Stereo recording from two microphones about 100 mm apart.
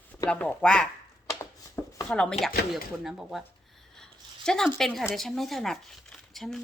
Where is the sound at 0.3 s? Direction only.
10° left (ahead or behind).